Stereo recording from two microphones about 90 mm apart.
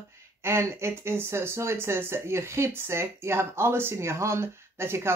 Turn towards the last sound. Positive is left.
turn(degrees=-30)  # may be behind; listen again after turning